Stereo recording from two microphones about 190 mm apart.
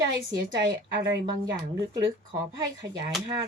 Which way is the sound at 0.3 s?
20° right (ahead or behind).